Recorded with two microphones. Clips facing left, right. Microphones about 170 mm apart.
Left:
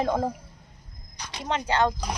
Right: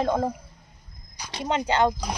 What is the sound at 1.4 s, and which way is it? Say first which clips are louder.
Speech: right 2 dB; 20° right (ahead or behind).